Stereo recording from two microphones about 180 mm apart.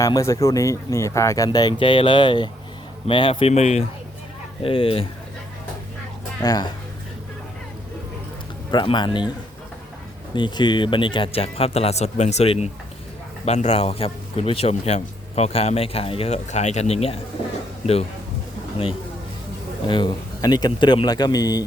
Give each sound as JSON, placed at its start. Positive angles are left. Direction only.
{"t": 0.0, "sound": "speech", "side_deg": 15}
{"t": 1.8, "sound": "a man's voice", "side_deg": 25}
{"t": 6.4, "sound": "speech", "side_deg": 20}
{"t": 8.7, "sound": "speech", "side_deg": 25}
{"t": 10.3, "sound": "a man's voice", "side_deg": 25}
{"t": 19.9, "sound": "speech", "side_deg": 25}